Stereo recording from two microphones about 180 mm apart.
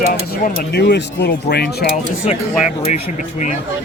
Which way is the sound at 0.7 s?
70° left (ahead or behind).